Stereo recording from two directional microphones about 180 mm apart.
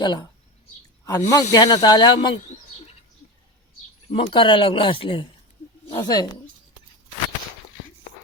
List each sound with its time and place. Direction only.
0.0 s speech: 25° left (ahead or behind)
2.3 s bird: 40° left (ahead or behind)
4.1 s speech: 30° left (ahead or behind)